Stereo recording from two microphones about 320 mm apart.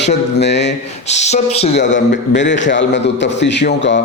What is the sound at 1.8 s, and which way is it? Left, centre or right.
A man's voice, left.